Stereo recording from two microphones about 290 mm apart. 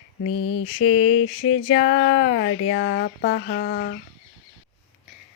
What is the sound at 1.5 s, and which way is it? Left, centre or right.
Speech, left.